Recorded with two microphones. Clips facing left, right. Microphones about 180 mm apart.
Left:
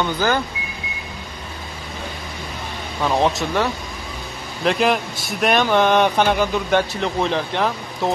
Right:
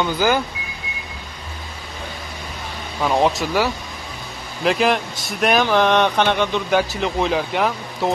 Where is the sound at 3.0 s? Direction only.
Centre (ahead or behind).